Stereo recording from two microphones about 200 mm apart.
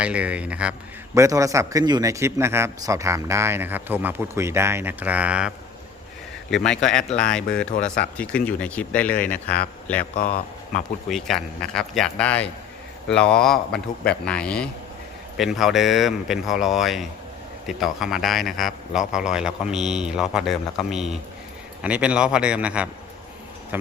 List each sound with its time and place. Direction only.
0.0 s a man's voice: 5° right (ahead or behind)
6.7 s a man's voice: 5° left (ahead or behind)
10.0 s speech: 45° left (ahead or behind)
11.1 s a man's voice: centre (ahead or behind)